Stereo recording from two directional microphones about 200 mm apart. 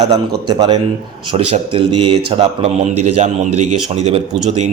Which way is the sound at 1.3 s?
25° right (ahead or behind).